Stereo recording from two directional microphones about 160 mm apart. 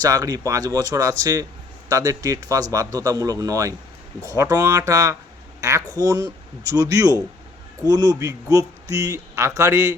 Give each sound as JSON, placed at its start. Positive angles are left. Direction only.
{"t": 0.0, "sound": "speech", "side_deg": -20}